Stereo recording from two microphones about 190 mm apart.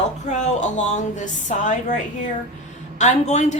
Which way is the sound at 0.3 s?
40° left (ahead or behind).